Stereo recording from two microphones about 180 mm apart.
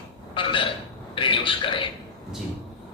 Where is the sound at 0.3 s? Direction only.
30° left (ahead or behind).